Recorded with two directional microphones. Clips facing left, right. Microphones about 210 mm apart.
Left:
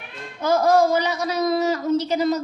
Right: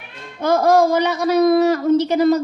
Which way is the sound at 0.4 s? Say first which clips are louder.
Right 3 dB; 55° right (ahead or behind).